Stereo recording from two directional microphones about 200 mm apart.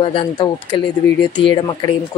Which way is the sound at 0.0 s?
25° left (ahead or behind).